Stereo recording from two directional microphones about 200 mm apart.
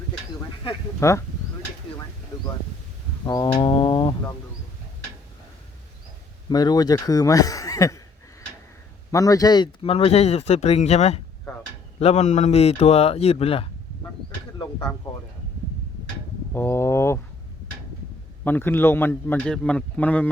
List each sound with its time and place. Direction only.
0.9 s a man's voice: 15° left (ahead or behind)
2.3 s a sound: 15° left (ahead or behind)
6.5 s a man's voice: 20° left (ahead or behind)
9.1 s speech: 15° left (ahead or behind)
15.1 s speech: 25° left (ahead or behind)
16.5 s a man's voice: 10° left (ahead or behind)
18.4 s a man's voice: 10° left (ahead or behind)